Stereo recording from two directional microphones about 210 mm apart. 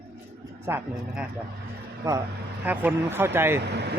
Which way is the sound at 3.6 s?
55° right (ahead or behind).